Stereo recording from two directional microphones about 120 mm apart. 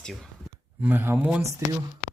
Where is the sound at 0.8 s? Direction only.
15° right (ahead or behind).